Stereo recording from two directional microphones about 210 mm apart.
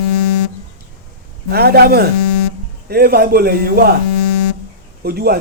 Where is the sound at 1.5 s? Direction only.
50° right (ahead or behind).